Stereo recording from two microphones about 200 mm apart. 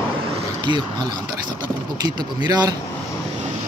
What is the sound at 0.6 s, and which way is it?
Speech, 20° right (ahead or behind).